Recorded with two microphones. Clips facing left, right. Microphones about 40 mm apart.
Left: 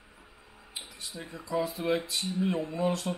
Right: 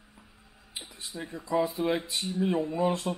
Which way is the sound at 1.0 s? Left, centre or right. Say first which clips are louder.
Right 4 dB; centre.